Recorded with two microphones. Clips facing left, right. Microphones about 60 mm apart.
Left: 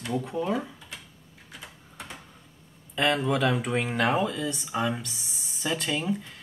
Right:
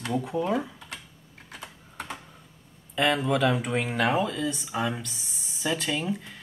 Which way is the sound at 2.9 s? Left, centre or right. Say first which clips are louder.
Right 1 dB; centre.